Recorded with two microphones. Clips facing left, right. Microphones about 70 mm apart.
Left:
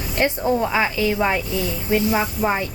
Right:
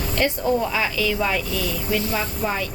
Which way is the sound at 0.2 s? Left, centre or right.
Left.